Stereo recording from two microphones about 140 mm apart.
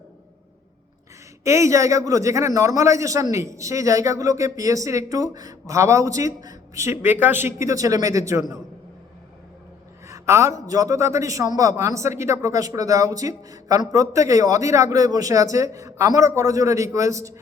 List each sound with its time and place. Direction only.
1.5 s a man's voice: 20° right (ahead or behind)
10.1 s a man's voice: 20° right (ahead or behind)